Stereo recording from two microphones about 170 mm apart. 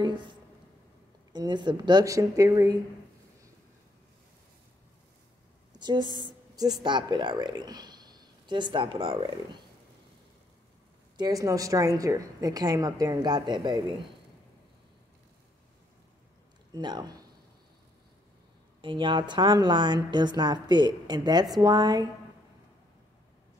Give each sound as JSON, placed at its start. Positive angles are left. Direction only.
{"t": 0.0, "sound": "a sound", "side_deg": -25}
{"t": 1.3, "sound": "a woman's voice", "side_deg": -25}
{"t": 5.8, "sound": "a woman's voice", "side_deg": -25}
{"t": 11.1, "sound": "a woman's voice", "side_deg": -20}
{"t": 16.7, "sound": "a woman's voice", "side_deg": -25}
{"t": 18.8, "sound": "a woman's voice", "side_deg": -30}